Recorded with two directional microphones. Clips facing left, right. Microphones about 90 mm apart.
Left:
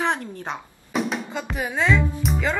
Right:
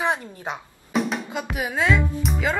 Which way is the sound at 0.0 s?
5° right (ahead or behind).